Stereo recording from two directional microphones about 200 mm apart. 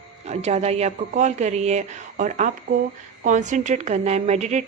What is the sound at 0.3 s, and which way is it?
A woman's voice, 35° right (ahead or behind).